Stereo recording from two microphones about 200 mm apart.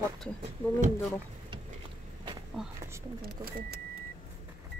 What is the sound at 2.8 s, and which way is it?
Speech, 15° right (ahead or behind).